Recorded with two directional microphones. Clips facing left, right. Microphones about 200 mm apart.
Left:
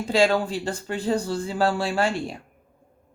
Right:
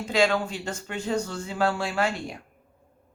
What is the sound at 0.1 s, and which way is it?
Speech, 30° left (ahead or behind).